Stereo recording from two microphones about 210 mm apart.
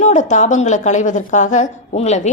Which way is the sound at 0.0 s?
35° left (ahead or behind).